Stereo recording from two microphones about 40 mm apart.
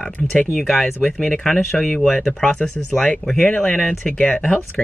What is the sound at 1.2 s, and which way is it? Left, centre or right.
Speech, centre.